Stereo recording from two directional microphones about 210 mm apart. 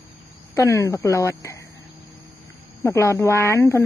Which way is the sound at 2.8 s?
15° left (ahead or behind).